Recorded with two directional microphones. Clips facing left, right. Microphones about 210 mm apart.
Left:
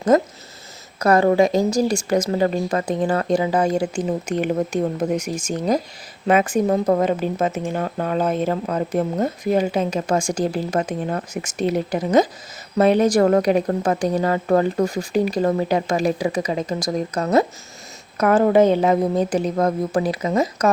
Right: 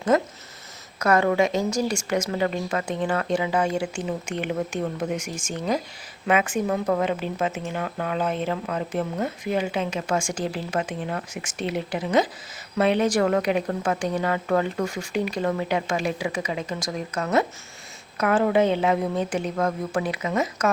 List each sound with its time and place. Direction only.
0.1 s speech: 40° left (ahead or behind)